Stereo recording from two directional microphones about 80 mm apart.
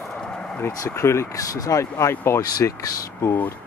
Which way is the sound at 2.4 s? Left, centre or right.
Left.